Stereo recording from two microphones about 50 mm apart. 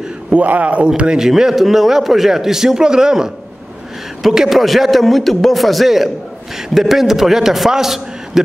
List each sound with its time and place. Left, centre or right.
0.3 s speech: right
1.2 s a man's voice: centre